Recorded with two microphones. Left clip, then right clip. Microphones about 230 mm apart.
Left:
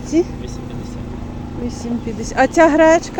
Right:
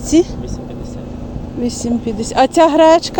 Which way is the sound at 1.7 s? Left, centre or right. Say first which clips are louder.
Right 6 dB; right.